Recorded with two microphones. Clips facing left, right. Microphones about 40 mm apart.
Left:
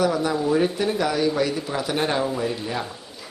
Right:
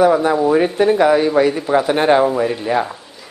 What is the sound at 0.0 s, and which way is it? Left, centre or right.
Speech, right.